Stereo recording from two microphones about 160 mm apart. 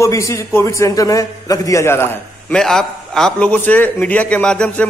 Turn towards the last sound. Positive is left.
turn(degrees=5)  # may be behind; listen again after turning